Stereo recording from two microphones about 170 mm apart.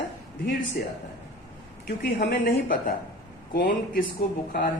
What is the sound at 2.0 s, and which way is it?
Speech, 65° left (ahead or behind).